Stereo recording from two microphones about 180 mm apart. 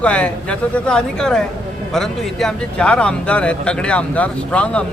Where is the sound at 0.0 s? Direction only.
5° left (ahead or behind).